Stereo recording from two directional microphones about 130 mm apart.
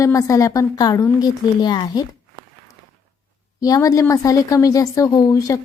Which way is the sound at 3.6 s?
25° left (ahead or behind).